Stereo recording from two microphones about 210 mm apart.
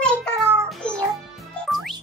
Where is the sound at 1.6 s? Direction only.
Centre (ahead or behind).